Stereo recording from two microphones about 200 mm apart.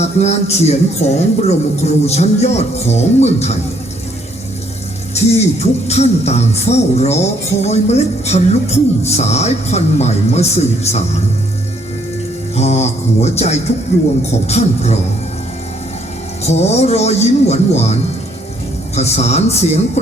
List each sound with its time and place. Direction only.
0.0 s music: 35° left (ahead or behind)
5.1 s music: 35° left (ahead or behind)
12.5 s music: 35° left (ahead or behind)
16.4 s music: 35° left (ahead or behind)